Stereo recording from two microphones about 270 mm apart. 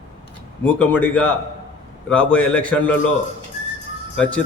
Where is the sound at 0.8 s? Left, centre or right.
Centre.